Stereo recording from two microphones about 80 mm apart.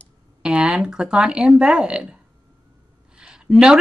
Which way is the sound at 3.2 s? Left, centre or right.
Centre.